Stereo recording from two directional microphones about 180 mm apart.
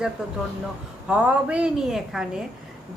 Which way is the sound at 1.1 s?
5° right (ahead or behind).